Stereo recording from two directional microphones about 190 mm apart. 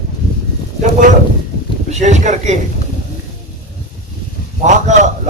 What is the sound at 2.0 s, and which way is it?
Speech, 40° right (ahead or behind).